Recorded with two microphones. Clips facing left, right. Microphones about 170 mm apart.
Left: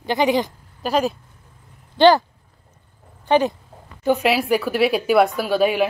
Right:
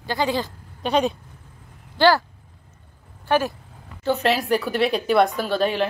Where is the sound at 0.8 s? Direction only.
Centre (ahead or behind).